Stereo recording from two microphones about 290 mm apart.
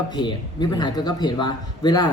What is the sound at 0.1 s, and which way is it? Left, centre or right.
Speech, centre.